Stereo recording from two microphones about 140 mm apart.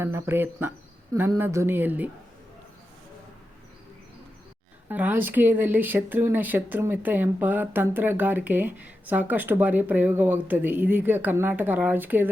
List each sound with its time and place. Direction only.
0.0 s speech: 20° right (ahead or behind)
4.9 s speech: 15° right (ahead or behind)